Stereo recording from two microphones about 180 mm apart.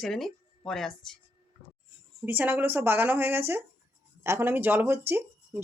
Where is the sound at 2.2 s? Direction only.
10° right (ahead or behind).